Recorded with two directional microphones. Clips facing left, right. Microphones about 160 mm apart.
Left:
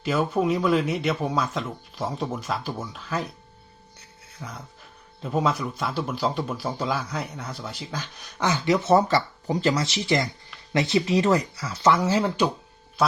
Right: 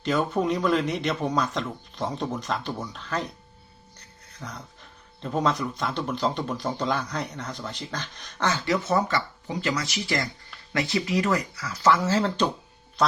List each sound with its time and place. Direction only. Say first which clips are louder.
0.0 s speech: left 1 dB; 5° left (ahead or behind)